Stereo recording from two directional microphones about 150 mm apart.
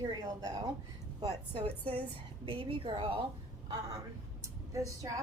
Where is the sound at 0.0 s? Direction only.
25° right (ahead or behind).